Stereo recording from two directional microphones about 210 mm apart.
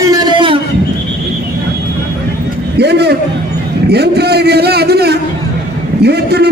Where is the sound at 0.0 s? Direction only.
20° right (ahead or behind).